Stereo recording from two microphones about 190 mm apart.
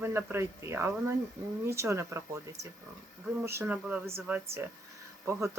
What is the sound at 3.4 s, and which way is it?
Speech, 10° right (ahead or behind).